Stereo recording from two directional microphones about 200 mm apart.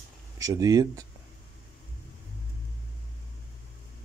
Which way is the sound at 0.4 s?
15° right (ahead or behind).